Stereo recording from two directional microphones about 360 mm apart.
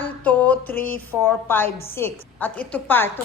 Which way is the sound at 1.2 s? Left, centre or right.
Centre.